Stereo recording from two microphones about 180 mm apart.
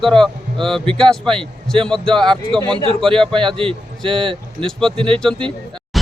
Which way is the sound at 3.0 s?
5° left (ahead or behind).